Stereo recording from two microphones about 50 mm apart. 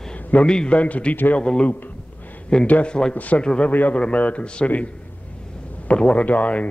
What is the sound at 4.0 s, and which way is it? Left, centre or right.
Speech, left.